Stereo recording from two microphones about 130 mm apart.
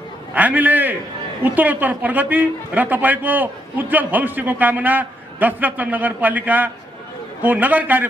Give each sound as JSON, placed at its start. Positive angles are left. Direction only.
{"t": 0.3, "sound": "a man's voice", "side_deg": -10}